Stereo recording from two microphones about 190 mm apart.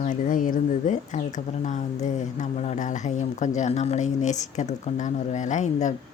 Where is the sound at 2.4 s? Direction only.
40° left (ahead or behind).